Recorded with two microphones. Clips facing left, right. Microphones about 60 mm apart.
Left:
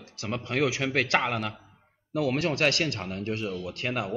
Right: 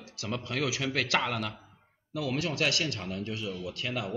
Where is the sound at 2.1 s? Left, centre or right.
Left.